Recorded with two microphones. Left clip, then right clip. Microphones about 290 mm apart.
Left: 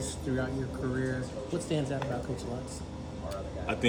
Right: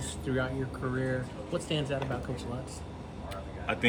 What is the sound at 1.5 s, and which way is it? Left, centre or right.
Speech, centre.